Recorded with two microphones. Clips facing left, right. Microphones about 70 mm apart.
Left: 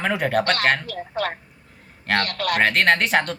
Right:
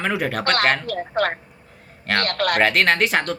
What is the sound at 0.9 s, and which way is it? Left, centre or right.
A man's voice, right.